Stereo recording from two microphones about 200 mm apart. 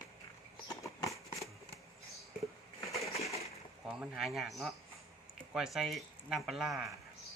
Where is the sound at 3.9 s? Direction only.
5° right (ahead or behind).